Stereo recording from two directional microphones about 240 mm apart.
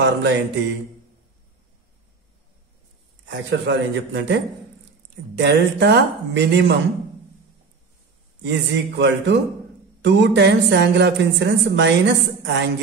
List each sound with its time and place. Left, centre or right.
0.0 s a woman's voice: right
3.3 s a woman's voice: right
5.4 s a woman's voice: right
8.5 s a woman's voice: right